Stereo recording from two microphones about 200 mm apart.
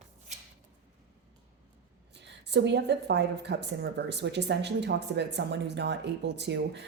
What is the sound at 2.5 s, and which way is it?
A woman's voice, 60° right (ahead or behind).